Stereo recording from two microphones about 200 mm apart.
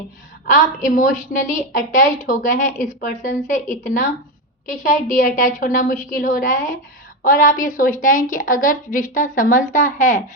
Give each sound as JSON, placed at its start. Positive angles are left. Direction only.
{"t": 0.4, "sound": "a woman's voice", "side_deg": 40}